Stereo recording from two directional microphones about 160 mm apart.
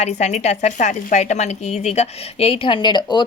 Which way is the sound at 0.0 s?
45° left (ahead or behind).